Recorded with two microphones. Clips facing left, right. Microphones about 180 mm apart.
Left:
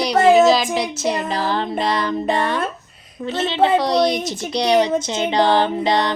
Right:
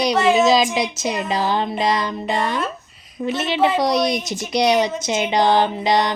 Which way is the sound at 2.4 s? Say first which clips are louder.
Left 1 dB; 60° left (ahead or behind).